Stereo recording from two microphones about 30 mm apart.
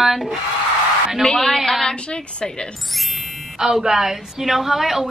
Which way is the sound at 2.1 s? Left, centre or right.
Left.